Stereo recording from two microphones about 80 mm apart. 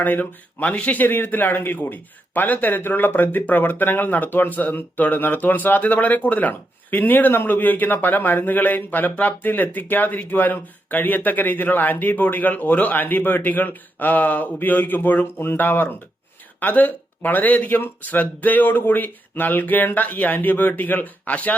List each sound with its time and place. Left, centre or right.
0.0 s speech: left